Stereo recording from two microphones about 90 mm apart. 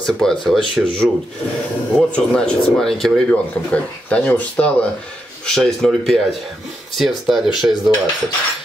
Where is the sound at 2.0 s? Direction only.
15° left (ahead or behind).